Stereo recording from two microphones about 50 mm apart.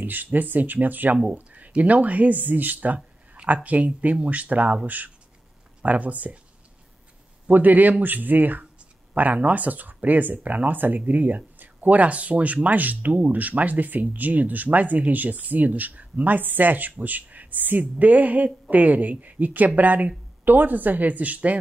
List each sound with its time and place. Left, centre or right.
0.0 s speech: right
7.4 s speech: right